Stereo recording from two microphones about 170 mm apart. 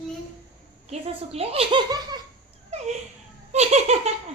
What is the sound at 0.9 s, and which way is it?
Speech, 35° right (ahead or behind).